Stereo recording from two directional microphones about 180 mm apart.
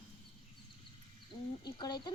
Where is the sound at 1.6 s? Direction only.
25° left (ahead or behind).